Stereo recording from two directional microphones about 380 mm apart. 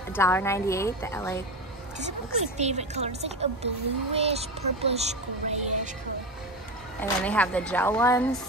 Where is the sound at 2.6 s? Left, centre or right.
Centre.